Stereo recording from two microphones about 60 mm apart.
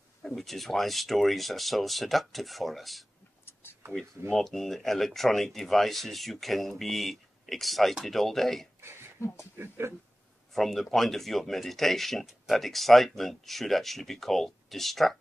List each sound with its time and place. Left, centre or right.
0.2 s speech: centre
4.3 s speech: centre
9.2 s speech: left
9.6 s speech: right
10.5 s speech: centre